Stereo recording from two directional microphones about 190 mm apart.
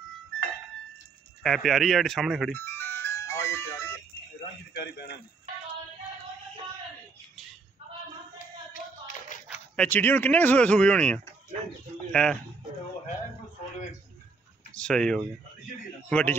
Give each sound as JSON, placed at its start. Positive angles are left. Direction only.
{"t": 1.4, "sound": "speech", "side_deg": 0}
{"t": 2.5, "sound": "music", "side_deg": 10}
{"t": 4.7, "sound": "a man's voice", "side_deg": 60}
{"t": 8.7, "sound": "clapping", "side_deg": 50}
{"t": 9.8, "sound": "speech", "side_deg": 10}
{"t": 14.8, "sound": "speech", "side_deg": 5}